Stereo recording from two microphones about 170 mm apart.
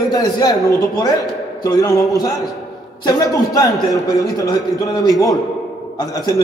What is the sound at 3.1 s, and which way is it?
A man's voice, 25° left (ahead or behind).